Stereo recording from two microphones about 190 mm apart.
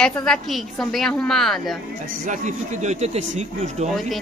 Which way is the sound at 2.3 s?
40° right (ahead or behind).